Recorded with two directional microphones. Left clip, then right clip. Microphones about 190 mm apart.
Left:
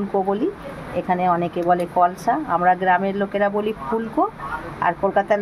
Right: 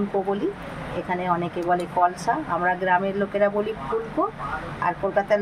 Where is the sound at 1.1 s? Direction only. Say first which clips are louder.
Left 5 dB; 40° left (ahead or behind).